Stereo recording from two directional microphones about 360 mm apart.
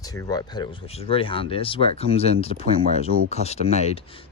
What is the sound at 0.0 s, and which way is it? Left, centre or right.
Speech, centre.